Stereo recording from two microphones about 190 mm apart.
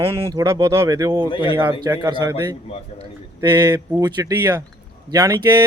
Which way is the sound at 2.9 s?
30° left (ahead or behind).